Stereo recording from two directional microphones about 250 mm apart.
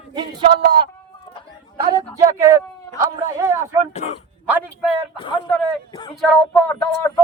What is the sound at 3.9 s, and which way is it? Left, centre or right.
Speech, left.